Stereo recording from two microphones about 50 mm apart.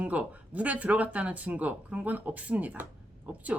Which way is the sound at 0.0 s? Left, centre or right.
Right.